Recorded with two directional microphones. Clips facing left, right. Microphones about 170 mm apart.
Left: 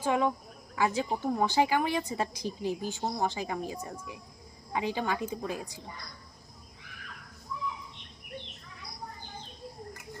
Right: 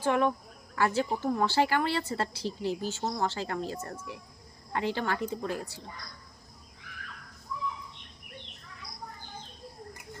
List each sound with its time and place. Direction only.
0.0 s speech: 15° left (ahead or behind)